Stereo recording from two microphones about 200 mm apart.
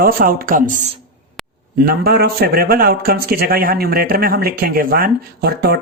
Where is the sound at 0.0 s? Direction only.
45° right (ahead or behind).